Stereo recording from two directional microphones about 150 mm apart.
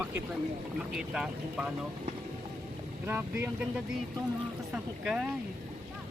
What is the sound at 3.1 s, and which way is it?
Speech, 15° right (ahead or behind).